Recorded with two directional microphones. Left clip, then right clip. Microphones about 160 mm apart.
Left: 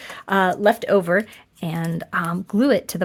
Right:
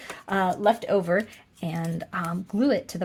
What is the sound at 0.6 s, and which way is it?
Speech, 50° left (ahead or behind).